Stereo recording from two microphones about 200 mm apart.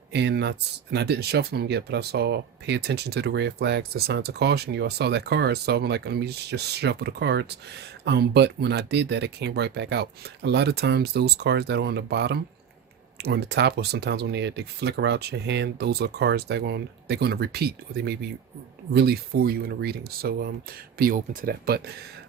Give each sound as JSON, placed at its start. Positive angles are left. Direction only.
{"t": 0.1, "sound": "speech", "side_deg": -55}